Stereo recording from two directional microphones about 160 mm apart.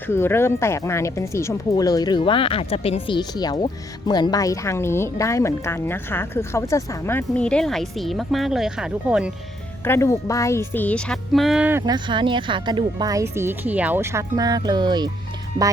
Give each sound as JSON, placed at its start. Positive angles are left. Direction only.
{"t": 0.1, "sound": "a woman's voice", "side_deg": 15}
{"t": 9.8, "sound": "a woman's voice", "side_deg": 15}
{"t": 11.9, "sound": "speech", "side_deg": -30}